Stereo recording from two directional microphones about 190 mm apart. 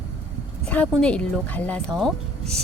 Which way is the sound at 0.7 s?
5° left (ahead or behind).